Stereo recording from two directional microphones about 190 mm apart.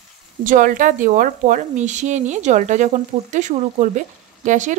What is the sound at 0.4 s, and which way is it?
A woman's voice, 45° right (ahead or behind).